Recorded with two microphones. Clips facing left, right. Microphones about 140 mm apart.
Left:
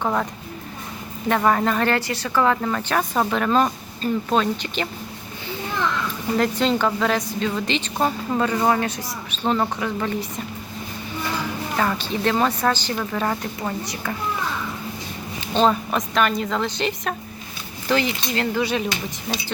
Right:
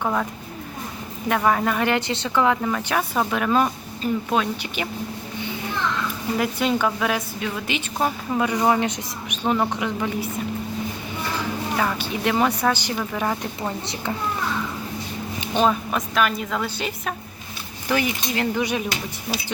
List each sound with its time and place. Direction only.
0.0 s speech: 5° left (ahead or behind)
1.4 s a woman's voice: centre (ahead or behind)
6.3 s a woman's voice: 10° right (ahead or behind)
8.4 s a woman's voice: 15° right (ahead or behind)
11.8 s a woman's voice: 10° right (ahead or behind)
15.6 s a woman's voice: 15° right (ahead or behind)
15.9 s a woman's voice: centre (ahead or behind)